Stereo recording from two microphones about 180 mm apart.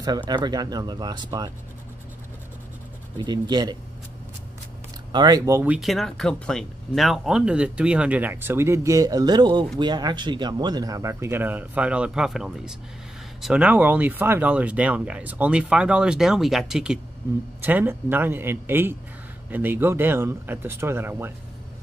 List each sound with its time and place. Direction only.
0.3 s speech: 20° right (ahead or behind)
3.2 s speech: 25° right (ahead or behind)
5.1 s speech: 20° right (ahead or behind)